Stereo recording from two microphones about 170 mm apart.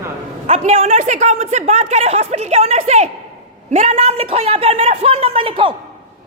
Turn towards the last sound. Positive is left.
turn(degrees=-30)  # may be behind; listen again after turning